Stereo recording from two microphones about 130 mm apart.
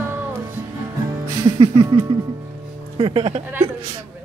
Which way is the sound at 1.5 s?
45° right (ahead or behind).